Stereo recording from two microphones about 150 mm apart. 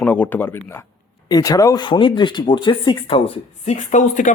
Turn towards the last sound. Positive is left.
turn(degrees=55)  # may be behind; listen again after turning